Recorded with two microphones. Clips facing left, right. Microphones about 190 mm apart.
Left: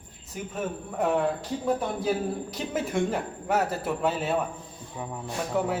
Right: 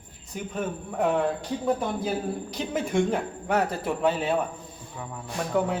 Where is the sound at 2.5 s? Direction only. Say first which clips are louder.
Right 2 dB; centre (ahead or behind).